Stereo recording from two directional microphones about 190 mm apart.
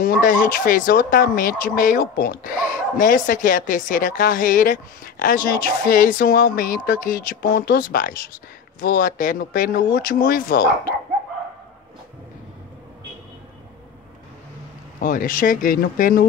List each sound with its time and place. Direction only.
0.0 s speech: 50° left (ahead or behind)
15.0 s speech: 45° left (ahead or behind)